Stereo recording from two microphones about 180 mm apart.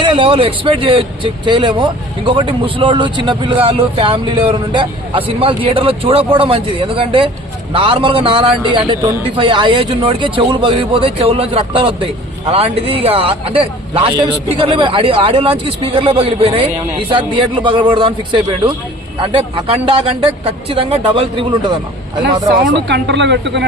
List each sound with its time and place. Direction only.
0.0 s a man's voice: 30° right (ahead or behind)
22.9 s speech: 75° right (ahead or behind)